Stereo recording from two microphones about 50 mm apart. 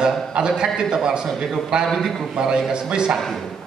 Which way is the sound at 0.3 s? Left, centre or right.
Centre.